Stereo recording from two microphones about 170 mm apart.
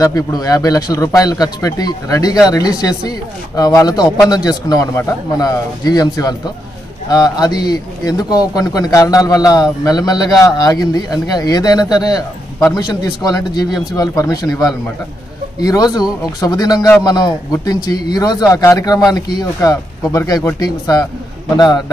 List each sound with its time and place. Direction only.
0.0 s a man's voice: 20° left (ahead or behind)